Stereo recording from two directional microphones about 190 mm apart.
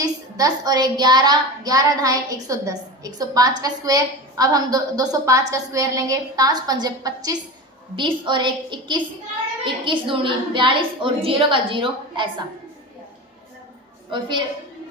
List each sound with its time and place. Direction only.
0.0 s a woman's voice: 20° right (ahead or behind)
14.1 s a woman's voice: 25° right (ahead or behind)